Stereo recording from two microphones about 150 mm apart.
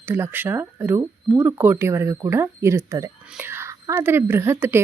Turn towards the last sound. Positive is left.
turn(degrees=-15)  # may be behind; listen again after turning